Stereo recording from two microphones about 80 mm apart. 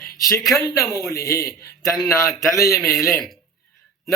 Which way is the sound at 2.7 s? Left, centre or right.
Left.